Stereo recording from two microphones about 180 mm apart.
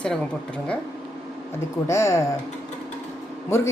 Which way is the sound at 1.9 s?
15° left (ahead or behind).